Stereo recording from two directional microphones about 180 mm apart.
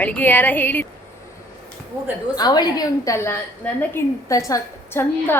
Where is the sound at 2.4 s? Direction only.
20° left (ahead or behind).